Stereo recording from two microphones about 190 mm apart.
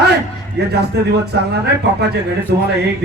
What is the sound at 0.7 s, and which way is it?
A man's voice, 60° right (ahead or behind).